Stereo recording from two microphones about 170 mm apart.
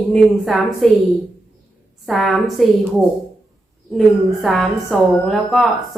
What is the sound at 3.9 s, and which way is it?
A woman's voice, centre (ahead or behind).